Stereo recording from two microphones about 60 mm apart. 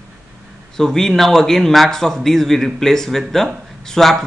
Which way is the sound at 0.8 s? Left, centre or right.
Centre.